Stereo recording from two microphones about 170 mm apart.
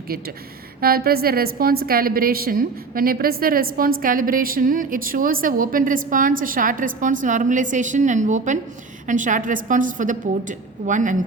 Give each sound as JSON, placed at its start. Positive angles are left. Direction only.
{"t": 0.8, "sound": "a woman's voice", "side_deg": -60}